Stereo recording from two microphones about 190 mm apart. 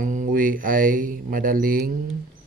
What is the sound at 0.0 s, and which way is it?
Speech, 40° right (ahead or behind).